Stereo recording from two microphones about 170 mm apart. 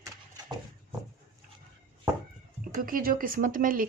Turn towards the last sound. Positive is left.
turn(degrees=-55)  # may be behind; listen again after turning